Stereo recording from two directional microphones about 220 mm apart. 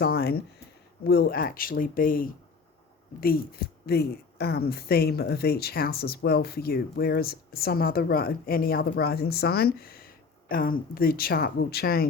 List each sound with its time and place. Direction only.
0.0 s a woman's voice: 45° left (ahead or behind)